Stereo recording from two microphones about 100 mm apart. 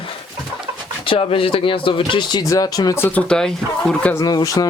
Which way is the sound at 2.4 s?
35° left (ahead or behind).